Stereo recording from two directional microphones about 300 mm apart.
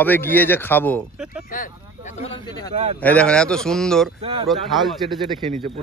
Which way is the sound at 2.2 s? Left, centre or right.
Centre.